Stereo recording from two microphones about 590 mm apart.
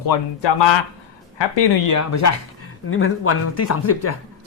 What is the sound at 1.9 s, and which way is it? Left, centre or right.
Speech, left.